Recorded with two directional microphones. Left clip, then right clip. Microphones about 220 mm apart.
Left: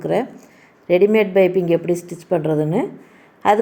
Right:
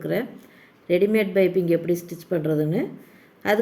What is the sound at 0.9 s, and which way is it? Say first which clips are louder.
Speech: left 6 dB; 70° left (ahead or behind).